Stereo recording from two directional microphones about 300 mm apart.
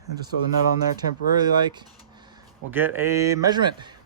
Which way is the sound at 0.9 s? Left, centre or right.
Centre.